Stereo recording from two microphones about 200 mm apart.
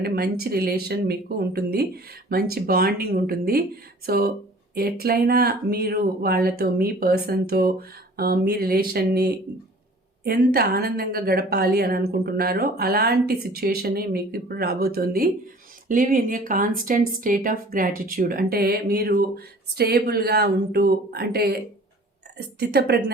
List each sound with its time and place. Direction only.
0.0 s speech: 50° right (ahead or behind)